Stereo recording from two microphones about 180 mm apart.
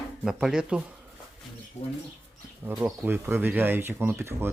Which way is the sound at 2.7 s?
10° right (ahead or behind).